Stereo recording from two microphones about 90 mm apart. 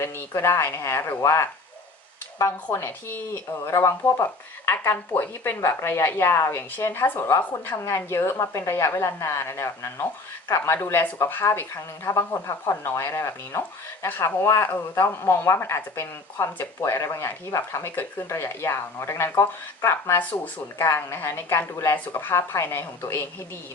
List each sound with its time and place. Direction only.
0.0 s speech: 25° left (ahead or behind)
2.7 s speech: 25° left (ahead or behind)